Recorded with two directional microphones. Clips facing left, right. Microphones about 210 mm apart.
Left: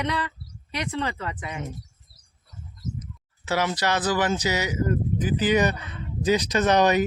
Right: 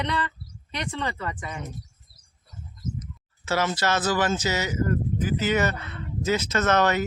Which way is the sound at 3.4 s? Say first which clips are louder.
Even; 15° left (ahead or behind).